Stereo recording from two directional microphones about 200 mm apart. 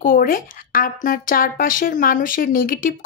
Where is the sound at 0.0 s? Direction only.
45° left (ahead or behind).